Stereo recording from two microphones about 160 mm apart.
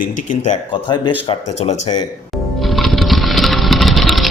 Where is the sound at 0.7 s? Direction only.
30° left (ahead or behind).